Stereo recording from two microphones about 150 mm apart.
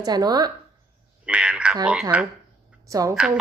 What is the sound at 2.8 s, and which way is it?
Speech, 20° right (ahead or behind).